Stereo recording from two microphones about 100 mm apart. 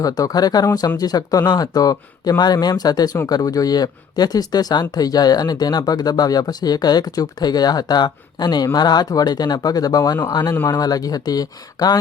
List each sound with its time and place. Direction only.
0.0 s speech: 35° left (ahead or behind)
10.5 s speech: 25° left (ahead or behind)
10.8 s speech: 40° left (ahead or behind)